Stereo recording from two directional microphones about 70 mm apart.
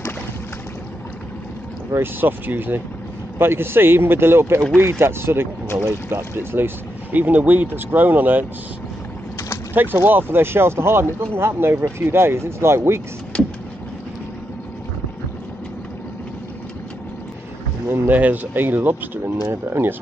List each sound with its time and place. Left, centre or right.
1.9 s speech: right
9.8 s speech: right
13.3 s vehicle: centre
17.8 s speech: right